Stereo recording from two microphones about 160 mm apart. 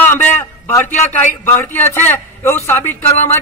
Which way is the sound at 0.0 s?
10° left (ahead or behind).